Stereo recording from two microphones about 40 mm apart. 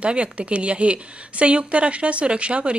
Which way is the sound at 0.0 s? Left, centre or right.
Right.